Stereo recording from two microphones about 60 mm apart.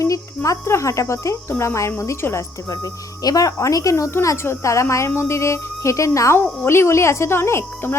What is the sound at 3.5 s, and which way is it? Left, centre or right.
Speech, left.